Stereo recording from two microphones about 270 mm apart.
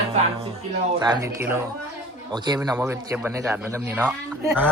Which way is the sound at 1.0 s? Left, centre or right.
Centre.